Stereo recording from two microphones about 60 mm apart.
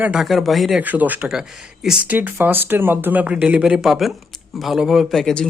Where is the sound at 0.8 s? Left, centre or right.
Right.